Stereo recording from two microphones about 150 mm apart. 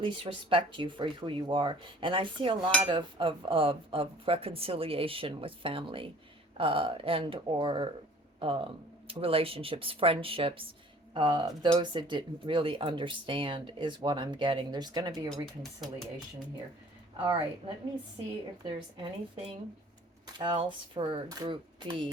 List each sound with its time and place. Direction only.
0.5 s speech: 35° right (ahead or behind)
17.2 s speech: 35° right (ahead or behind)
18.6 s speech: 30° right (ahead or behind)